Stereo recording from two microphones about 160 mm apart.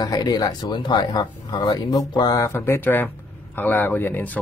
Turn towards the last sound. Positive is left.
turn(degrees=10)  # may be behind; listen again after turning